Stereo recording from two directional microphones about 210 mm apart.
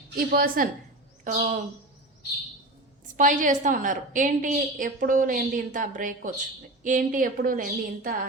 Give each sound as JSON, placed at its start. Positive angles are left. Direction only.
{"t": 0.2, "sound": "a woman's voice", "side_deg": -45}
{"t": 3.2, "sound": "a woman's voice", "side_deg": -40}